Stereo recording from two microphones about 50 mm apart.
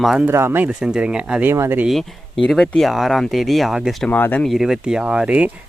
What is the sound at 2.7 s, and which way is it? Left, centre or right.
Speech, centre.